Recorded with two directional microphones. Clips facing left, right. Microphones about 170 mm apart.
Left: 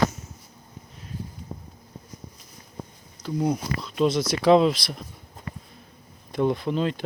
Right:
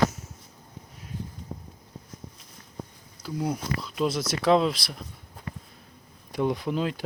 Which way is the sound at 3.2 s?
30° right (ahead or behind).